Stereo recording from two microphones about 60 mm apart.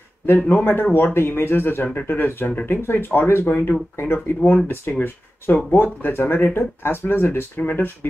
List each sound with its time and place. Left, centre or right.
0.5 s speech: left
2.0 s speech: left
2.2 s speech: left